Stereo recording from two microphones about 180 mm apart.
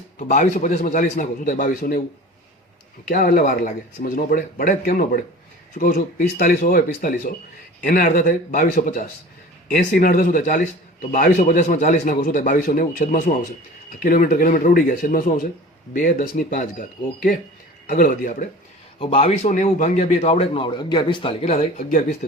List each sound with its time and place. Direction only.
0.2 s a man's voice: 45° left (ahead or behind)
3.1 s a man's voice: 50° left (ahead or behind)
18.9 s speech: 30° left (ahead or behind)